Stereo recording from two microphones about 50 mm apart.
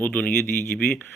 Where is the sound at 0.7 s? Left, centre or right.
Centre.